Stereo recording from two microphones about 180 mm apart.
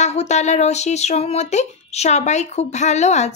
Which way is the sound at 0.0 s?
40° left (ahead or behind).